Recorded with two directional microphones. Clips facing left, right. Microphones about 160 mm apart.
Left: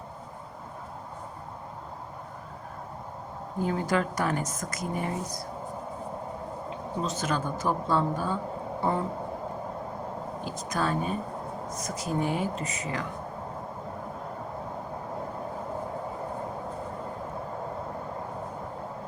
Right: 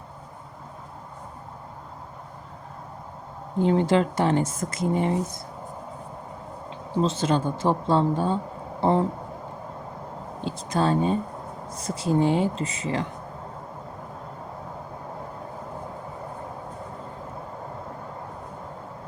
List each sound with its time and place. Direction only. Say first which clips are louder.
3.6 s speech: right 7 dB; 25° right (ahead or behind)
6.9 s a man's voice: right 7 dB; 30° right (ahead or behind)
10.4 s speech: right 6 dB; 30° right (ahead or behind)